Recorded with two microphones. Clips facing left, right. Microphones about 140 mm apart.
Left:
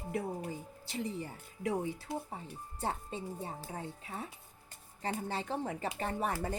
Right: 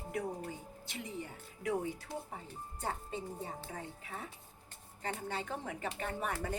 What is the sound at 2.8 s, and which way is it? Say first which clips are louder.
Speech: left 2 dB; 30° left (ahead or behind).